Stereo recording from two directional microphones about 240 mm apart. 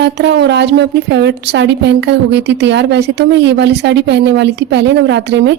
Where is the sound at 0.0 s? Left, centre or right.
Right.